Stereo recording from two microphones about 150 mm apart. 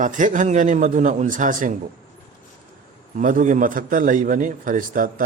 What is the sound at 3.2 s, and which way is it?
A man's voice, 60° right (ahead or behind).